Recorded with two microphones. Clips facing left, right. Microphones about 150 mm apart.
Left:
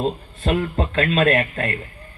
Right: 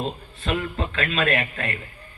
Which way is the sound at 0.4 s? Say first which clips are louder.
Left 5 dB; 45° left (ahead or behind).